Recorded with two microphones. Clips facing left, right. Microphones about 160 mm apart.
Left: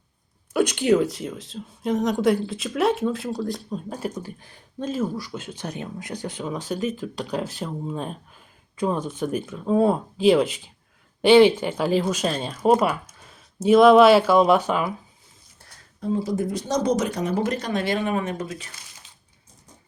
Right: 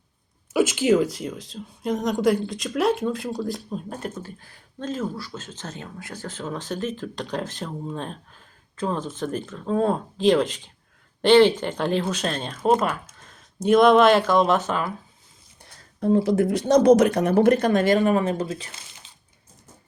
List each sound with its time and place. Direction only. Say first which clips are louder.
0.5 s speech: even; centre (ahead or behind)
4.1 s speech: left 2 dB; 15° left (ahead or behind)
16.0 s speech: right 5 dB; 60° right (ahead or behind); by 19.1 s 30° right (ahead or behind)